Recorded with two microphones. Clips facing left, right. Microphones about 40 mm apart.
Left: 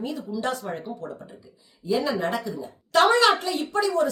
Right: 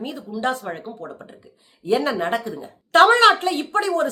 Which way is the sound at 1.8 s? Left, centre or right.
Right.